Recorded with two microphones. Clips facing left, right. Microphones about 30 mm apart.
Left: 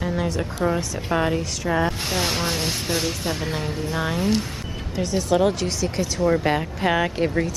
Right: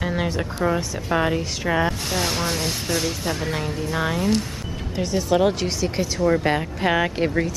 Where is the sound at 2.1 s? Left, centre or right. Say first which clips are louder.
Even; centre.